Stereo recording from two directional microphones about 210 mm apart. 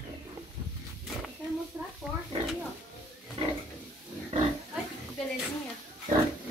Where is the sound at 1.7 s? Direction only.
10° right (ahead or behind).